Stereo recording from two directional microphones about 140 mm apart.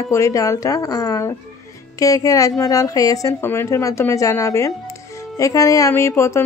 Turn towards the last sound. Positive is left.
turn(degrees=20)  # may be behind; listen again after turning